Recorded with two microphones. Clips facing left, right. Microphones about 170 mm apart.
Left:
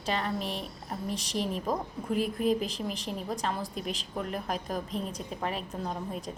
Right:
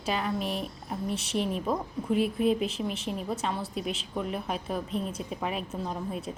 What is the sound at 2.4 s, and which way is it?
A woman's voice, centre (ahead or behind).